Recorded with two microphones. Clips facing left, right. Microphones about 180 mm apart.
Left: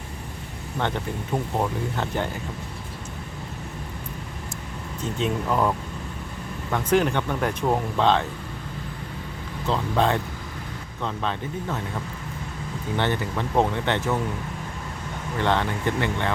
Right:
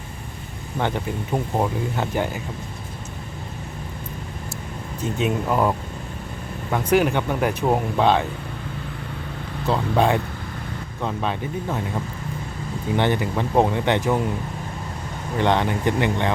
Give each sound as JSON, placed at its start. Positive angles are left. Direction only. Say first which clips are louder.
{"t": 0.8, "sound": "speech", "louder": "right 3 dB", "side_deg": -10}
{"t": 5.1, "sound": "speech", "louder": "right 2 dB", "side_deg": -10}
{"t": 9.6, "sound": "speech", "louder": "right 3 dB", "side_deg": -10}
{"t": 13.0, "sound": "speech", "louder": "right 4 dB", "side_deg": -15}
{"t": 15.4, "sound": "speech", "louder": "right 4 dB", "side_deg": -15}